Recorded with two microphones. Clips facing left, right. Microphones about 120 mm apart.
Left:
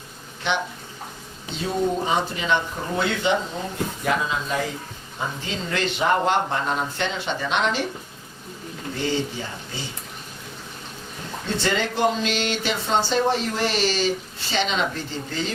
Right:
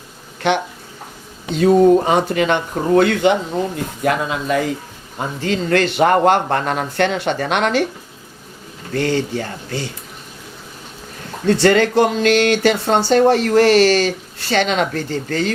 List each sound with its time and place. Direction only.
1.5 s speech: 60° right (ahead or behind)
8.9 s speech: 65° right (ahead or behind)
11.4 s speech: 70° right (ahead or behind)